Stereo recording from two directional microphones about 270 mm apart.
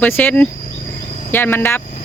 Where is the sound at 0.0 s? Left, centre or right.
Centre.